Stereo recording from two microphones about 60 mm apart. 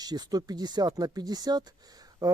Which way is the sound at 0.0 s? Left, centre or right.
Right.